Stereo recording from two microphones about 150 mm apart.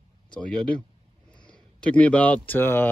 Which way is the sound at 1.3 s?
5° left (ahead or behind).